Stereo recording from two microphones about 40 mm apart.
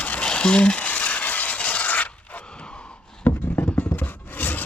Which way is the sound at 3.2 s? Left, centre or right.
Left.